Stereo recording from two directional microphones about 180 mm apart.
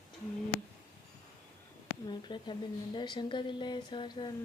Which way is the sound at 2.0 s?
25° left (ahead or behind).